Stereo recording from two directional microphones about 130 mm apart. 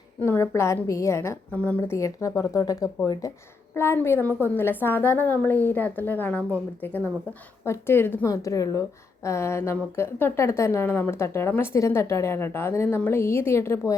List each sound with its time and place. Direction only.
0.2 s a woman's voice: 15° left (ahead or behind)
1.5 s a woman's voice: 10° left (ahead or behind)
2.0 s a woman's voice: 25° left (ahead or behind)